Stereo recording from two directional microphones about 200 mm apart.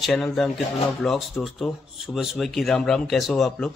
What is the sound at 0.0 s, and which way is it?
Speech, centre (ahead or behind).